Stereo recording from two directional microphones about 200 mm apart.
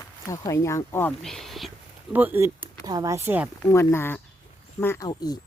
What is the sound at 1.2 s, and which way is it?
Speech, centre (ahead or behind).